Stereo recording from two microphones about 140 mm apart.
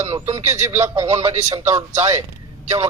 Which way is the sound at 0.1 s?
20° right (ahead or behind).